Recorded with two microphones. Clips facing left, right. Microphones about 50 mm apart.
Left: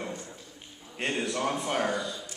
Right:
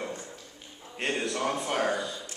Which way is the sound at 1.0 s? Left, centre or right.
Centre.